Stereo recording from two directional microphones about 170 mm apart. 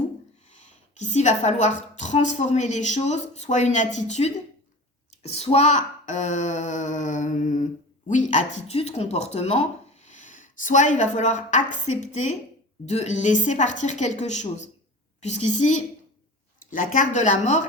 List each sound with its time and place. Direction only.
0.9 s speech: 45° left (ahead or behind)
10.1 s a woman's voice: 45° left (ahead or behind)
16.6 s a sound: 50° left (ahead or behind)
16.9 s speech: 45° left (ahead or behind)